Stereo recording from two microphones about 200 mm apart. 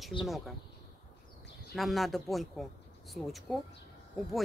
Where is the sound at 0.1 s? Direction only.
25° left (ahead or behind).